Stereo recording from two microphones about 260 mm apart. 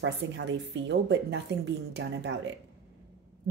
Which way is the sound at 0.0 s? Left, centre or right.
Right.